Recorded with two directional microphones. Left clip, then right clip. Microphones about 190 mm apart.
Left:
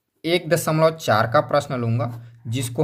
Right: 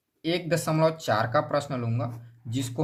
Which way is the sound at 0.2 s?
30° left (ahead or behind).